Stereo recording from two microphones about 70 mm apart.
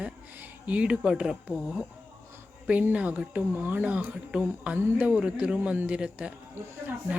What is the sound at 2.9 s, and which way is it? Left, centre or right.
Speech, centre.